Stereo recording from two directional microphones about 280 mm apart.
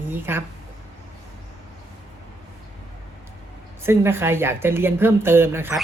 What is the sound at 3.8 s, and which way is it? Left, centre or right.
Speech, centre.